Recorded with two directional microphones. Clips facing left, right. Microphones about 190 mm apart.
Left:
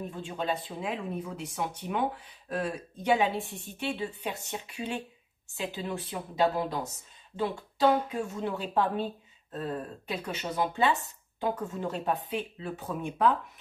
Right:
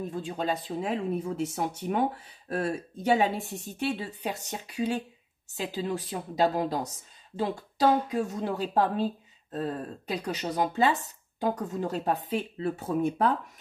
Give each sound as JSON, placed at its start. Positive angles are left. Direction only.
{"t": 0.1, "sound": "speech", "side_deg": -40}